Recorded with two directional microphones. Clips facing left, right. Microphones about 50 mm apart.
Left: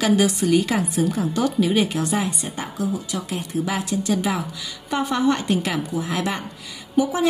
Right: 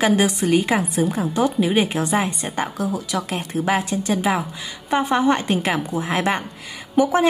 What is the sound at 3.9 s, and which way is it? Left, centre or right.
A woman's voice, right.